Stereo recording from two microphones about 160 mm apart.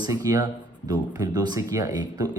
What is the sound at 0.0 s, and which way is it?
Speech, 20° right (ahead or behind).